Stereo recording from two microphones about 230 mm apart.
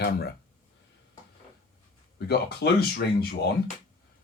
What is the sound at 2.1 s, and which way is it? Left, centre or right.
Speech, left.